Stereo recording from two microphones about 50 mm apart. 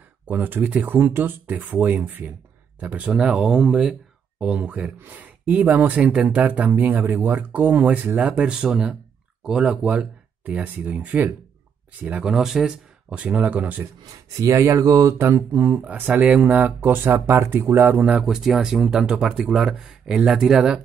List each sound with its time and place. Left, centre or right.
0.3 s speech: right
3.1 s speech: centre
4.4 s speech: right
8.2 s speech: right
12.3 s speech: centre
13.1 s speech: right
14.6 s speech: right
15.1 s speech: right
18.2 s speech: centre